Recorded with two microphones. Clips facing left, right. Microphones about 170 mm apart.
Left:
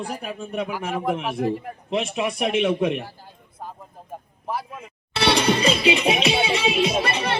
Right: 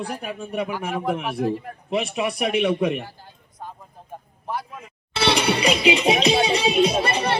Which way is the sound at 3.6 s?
5° left (ahead or behind).